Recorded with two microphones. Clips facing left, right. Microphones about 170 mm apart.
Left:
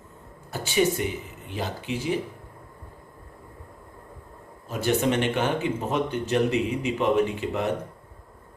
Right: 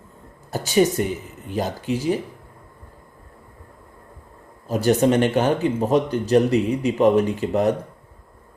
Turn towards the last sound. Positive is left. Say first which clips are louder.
# right 6 dB
turn(degrees=-40)  # may be behind; listen again after turning